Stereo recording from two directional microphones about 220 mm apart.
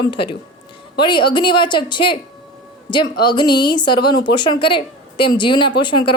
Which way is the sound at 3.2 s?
20° left (ahead or behind).